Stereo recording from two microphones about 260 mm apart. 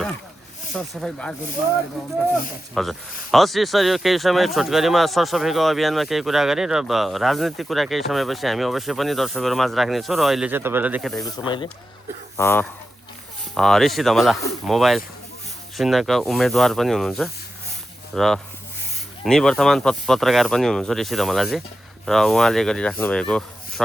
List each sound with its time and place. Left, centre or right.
0.7 s speech: centre
2.8 s speech: centre
11.2 s speech: centre